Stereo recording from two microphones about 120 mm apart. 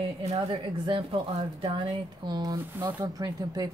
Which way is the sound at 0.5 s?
45° right (ahead or behind).